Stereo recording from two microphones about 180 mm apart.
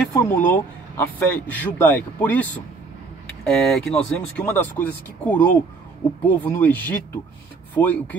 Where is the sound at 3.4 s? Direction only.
5° left (ahead or behind).